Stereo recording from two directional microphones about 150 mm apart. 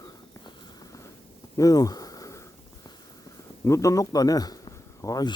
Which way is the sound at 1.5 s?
25° left (ahead or behind).